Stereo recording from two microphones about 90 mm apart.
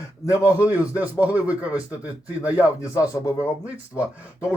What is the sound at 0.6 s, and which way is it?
A man's voice, 20° right (ahead or behind).